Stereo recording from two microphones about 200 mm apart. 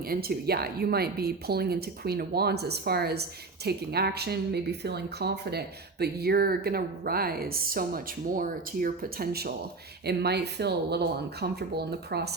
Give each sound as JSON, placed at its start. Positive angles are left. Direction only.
{"t": 0.1, "sound": "a woman's voice", "side_deg": -50}